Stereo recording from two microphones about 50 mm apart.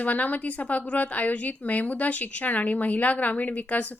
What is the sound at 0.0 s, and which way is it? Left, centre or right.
A woman's voice, left.